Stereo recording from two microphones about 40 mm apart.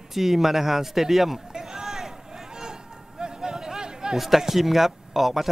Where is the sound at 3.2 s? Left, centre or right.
Centre.